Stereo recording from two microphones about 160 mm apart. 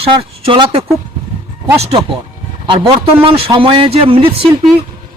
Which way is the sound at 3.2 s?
35° right (ahead or behind).